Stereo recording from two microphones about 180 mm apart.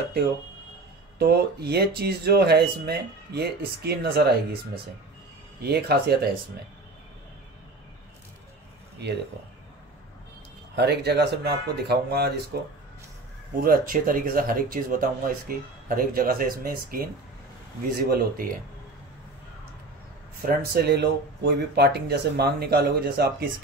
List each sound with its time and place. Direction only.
1.1 s speech: 65° right (ahead or behind)
5.6 s speech: 60° right (ahead or behind)
9.0 s speech: 65° right (ahead or behind)
10.8 s speech: 65° right (ahead or behind)
13.6 s speech: 50° right (ahead or behind)
20.4 s speech: 60° right (ahead or behind)